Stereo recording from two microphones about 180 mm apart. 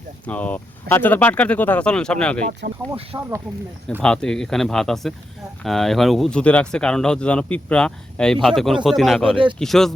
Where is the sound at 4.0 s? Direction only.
5° left (ahead or behind).